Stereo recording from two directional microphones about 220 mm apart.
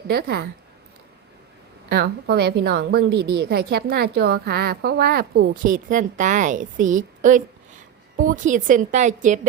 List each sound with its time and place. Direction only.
0.1 s a woman's voice: 45° right (ahead or behind)
1.9 s a woman's voice: 45° right (ahead or behind)